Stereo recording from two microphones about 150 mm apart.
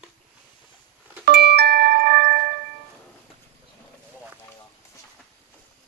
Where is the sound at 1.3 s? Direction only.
90° right.